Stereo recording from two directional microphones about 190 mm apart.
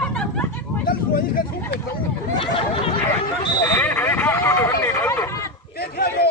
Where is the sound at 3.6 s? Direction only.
10° left (ahead or behind).